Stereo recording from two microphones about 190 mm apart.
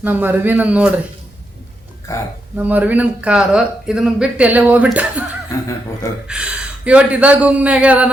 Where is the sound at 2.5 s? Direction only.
10° right (ahead or behind).